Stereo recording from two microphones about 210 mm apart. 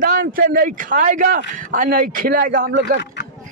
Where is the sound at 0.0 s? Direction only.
40° right (ahead or behind).